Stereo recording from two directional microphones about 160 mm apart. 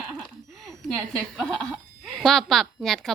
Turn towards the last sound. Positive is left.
turn(degrees=0)  # may be behind; listen again after turning